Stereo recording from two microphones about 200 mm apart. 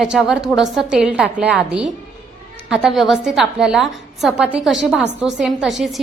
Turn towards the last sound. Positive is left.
turn(degrees=0)  # may be behind; listen again after turning